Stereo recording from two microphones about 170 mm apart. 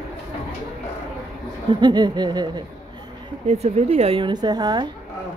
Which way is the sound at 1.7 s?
25° right (ahead or behind).